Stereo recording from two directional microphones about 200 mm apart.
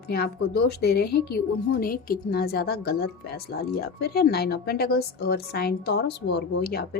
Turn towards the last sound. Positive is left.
turn(degrees=55)  # may be behind; listen again after turning